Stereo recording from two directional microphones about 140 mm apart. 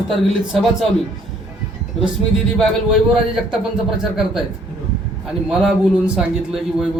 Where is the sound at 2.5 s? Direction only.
Centre (ahead or behind).